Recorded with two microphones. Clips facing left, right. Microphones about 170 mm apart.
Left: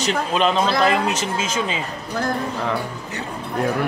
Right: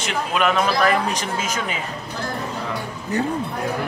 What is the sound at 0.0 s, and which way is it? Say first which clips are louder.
A man's voice: left 2 dB; 30° left (ahead or behind).